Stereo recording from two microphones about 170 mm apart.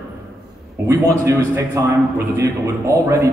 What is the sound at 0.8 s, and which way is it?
A man's voice, 20° right (ahead or behind).